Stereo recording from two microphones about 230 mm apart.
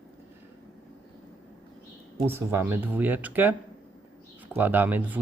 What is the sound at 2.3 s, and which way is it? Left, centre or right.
Speech, centre.